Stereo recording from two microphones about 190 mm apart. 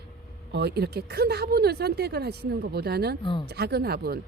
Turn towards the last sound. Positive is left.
turn(degrees=-55)  # may be behind; listen again after turning